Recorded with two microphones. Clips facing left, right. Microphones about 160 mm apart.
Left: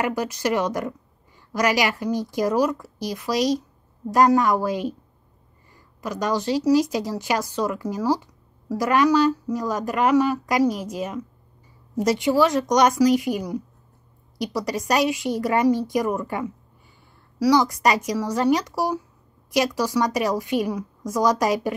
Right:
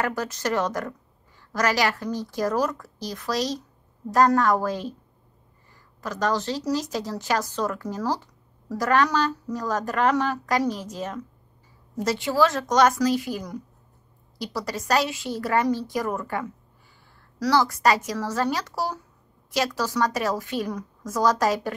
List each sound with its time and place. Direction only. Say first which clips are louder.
0.0 s speech: left 3 dB; 15° left (ahead or behind)
5.9 s speech: left 1 dB; 15° left (ahead or behind)